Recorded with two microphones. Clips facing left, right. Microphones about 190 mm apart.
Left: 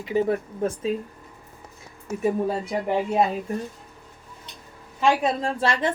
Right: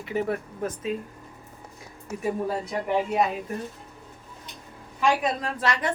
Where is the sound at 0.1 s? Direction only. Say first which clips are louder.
Left 5 dB; 25° left (ahead or behind).